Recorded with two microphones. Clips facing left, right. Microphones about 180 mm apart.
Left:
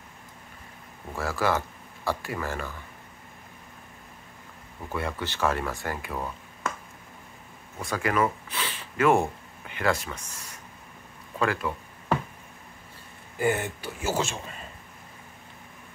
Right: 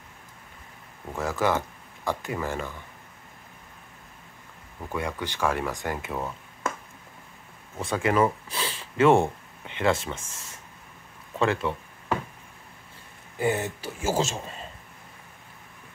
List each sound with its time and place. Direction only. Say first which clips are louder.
1.1 s speech: right 1 dB; 20° right (ahead or behind)
4.9 s speech: even; 15° right (ahead or behind)
7.8 s speech: right 3 dB; 25° right (ahead or behind)
13.4 s speech: even; 25° right (ahead or behind)
13.8 s speech: right 2 dB; 45° right (ahead or behind)